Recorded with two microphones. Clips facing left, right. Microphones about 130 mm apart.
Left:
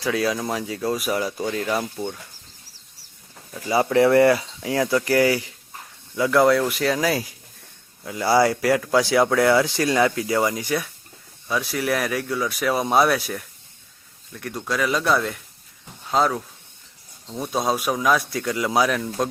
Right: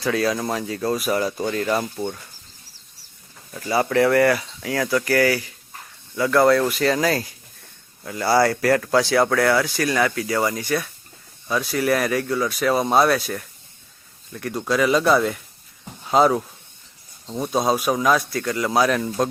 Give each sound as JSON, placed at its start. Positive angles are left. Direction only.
{"t": 0.0, "sound": "speech", "side_deg": 5}
{"t": 3.7, "sound": "speech", "side_deg": 20}
{"t": 11.4, "sound": "speech", "side_deg": 0}
{"t": 17.4, "sound": "speech", "side_deg": 0}